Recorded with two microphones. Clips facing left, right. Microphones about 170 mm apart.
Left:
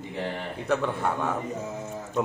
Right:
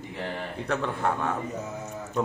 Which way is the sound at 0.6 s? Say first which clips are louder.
Left 2 dB; 5° left (ahead or behind).